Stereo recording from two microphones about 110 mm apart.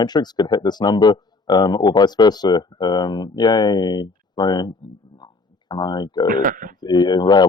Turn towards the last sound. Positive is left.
turn(degrees=40)  # may be behind; listen again after turning